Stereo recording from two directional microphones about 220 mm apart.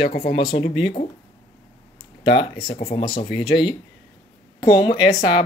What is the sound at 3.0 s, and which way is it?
Speech, 20° left (ahead or behind).